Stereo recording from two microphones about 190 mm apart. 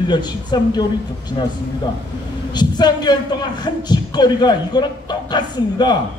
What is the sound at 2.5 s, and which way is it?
A man's voice, 20° left (ahead or behind).